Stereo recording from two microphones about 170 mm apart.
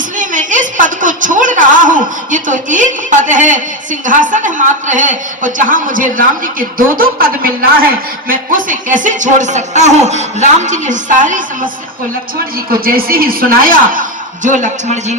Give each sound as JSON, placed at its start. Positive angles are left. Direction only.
{"t": 0.2, "sound": "a woman's voice", "side_deg": -50}
{"t": 12.7, "sound": "a man's voice", "side_deg": -60}